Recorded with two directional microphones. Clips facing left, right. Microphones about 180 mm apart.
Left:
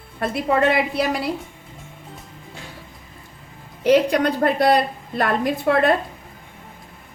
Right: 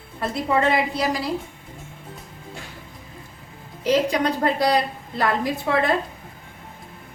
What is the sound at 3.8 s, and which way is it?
A woman's voice, 60° left (ahead or behind).